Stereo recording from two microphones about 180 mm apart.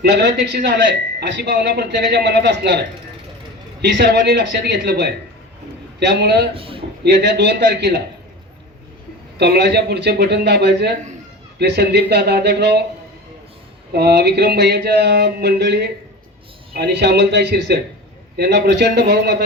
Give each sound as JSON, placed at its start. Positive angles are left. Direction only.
{"t": 0.0, "sound": "speech", "side_deg": -65}
{"t": 6.5, "sound": "speech", "side_deg": -30}
{"t": 7.0, "sound": "speech", "side_deg": -70}
{"t": 9.4, "sound": "speech", "side_deg": -65}
{"t": 13.9, "sound": "speech", "side_deg": -65}